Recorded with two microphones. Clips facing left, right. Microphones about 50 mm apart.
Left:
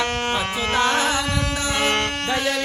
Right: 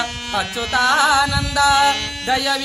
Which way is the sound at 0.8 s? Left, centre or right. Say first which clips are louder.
Right 7 dB; right.